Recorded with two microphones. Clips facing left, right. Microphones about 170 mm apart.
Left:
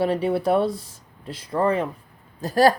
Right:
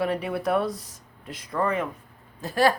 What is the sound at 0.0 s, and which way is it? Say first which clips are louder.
A woman's voice: left 5 dB; 30° left (ahead or behind).